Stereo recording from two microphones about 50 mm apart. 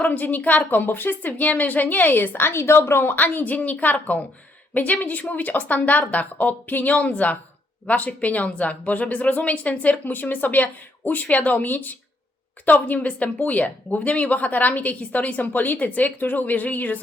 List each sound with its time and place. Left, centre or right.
0.0 s a woman's voice: left
2.5 s speech: left
3.2 s a woman's voice: left